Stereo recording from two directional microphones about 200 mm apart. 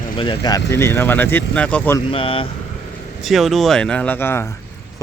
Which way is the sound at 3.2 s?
Centre (ahead or behind).